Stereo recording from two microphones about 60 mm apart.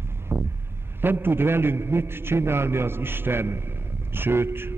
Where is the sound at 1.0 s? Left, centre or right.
Right.